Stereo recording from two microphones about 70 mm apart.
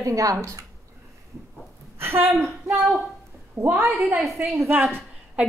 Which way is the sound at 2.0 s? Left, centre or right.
Right.